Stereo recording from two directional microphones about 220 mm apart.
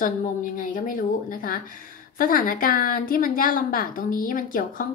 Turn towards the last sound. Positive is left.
turn(degrees=40)  # may be behind; listen again after turning